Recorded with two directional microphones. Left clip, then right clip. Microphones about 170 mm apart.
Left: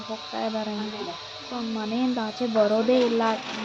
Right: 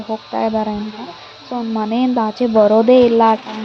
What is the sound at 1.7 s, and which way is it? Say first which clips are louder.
Speech: right 11 dB; 30° right (ahead or behind).